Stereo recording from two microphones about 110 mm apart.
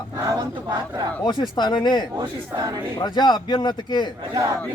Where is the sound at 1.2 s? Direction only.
40° left (ahead or behind).